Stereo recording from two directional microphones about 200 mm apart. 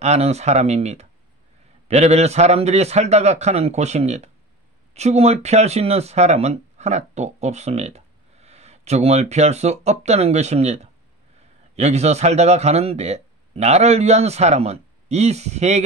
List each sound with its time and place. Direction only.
0.0 s a man's voice: 35° right (ahead or behind)